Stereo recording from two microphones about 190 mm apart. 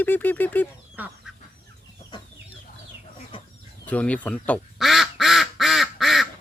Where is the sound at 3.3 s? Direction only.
25° left (ahead or behind).